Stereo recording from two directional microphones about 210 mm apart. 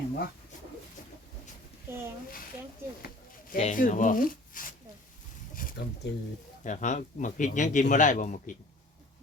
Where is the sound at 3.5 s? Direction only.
40° left (ahead or behind).